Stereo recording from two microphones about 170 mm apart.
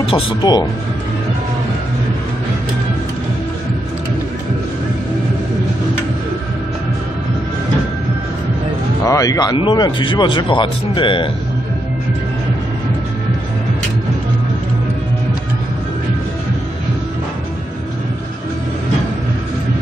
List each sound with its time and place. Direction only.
0.0 s speech: 30° left (ahead or behind)
9.0 s speech: 20° left (ahead or behind)